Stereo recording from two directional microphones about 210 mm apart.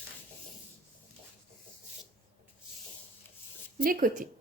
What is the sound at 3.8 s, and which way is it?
Speech, 45° right (ahead or behind).